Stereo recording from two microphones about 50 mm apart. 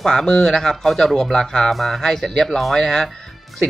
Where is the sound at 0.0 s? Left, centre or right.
Centre.